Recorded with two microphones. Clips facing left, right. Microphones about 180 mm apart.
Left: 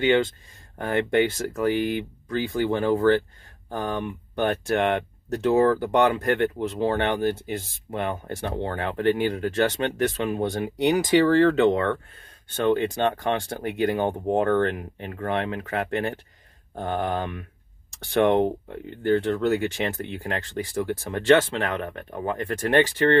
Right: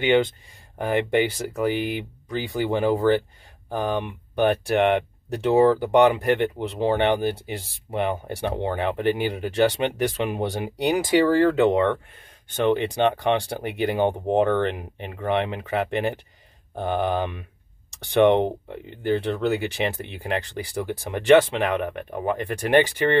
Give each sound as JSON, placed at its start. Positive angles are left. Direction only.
{"t": 0.0, "sound": "speech", "side_deg": -20}
{"t": 12.4, "sound": "speech", "side_deg": -15}